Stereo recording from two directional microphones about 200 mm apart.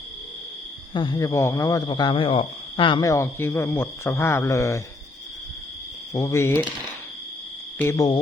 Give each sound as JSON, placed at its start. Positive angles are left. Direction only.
{"t": 0.9, "sound": "speech", "side_deg": 20}
{"t": 6.1, "sound": "speech", "side_deg": 15}
{"t": 7.8, "sound": "speech", "side_deg": 15}